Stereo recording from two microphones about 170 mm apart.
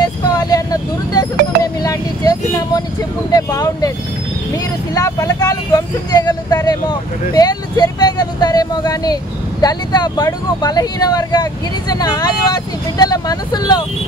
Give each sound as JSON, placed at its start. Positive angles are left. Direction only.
{"t": 0.4, "sound": "vehicle", "side_deg": 20}
{"t": 3.3, "sound": "speech", "side_deg": 20}
{"t": 4.9, "sound": "speech", "side_deg": 20}